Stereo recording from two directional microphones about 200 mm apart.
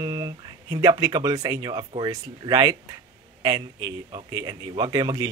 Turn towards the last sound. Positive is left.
turn(degrees=-20)  # may be behind; listen again after turning